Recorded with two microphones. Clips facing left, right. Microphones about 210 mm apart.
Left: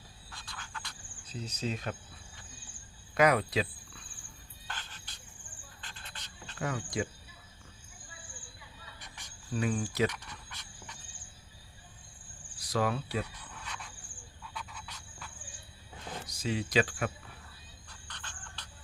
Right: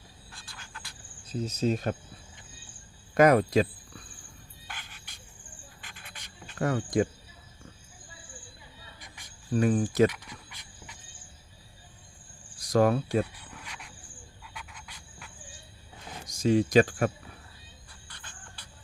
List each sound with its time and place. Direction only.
0.5 s insect: 10° right (ahead or behind)
1.3 s speech: 45° right (ahead or behind)
3.2 s speech: 45° right (ahead or behind)
4.7 s music: 10° right (ahead or behind)
5.8 s cricket: 10° right (ahead or behind)
6.6 s speech: 50° right (ahead or behind)
9.5 s speech: 45° right (ahead or behind)
10.1 s dog: 10° right (ahead or behind)
12.5 s cricket: 45° right (ahead or behind)
13.7 s cricket: 15° right (ahead or behind)
14.5 s a sound: 10° right (ahead or behind)
16.2 s speech: 45° right (ahead or behind)
17.8 s squeal: 10° right (ahead or behind)